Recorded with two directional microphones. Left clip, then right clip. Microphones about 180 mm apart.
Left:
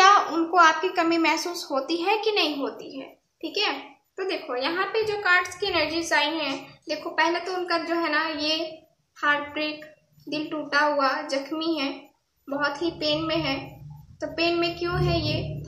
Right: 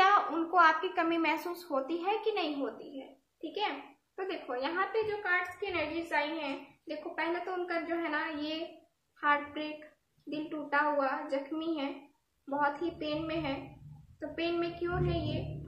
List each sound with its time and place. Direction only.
0.0 s a woman's voice: 10° left (ahead or behind)